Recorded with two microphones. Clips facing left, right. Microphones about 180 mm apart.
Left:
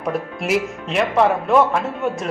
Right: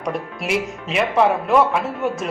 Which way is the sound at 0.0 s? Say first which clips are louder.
Left 2 dB; centre (ahead or behind).